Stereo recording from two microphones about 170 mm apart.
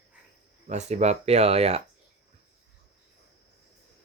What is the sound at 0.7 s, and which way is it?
Speech, 40° right (ahead or behind).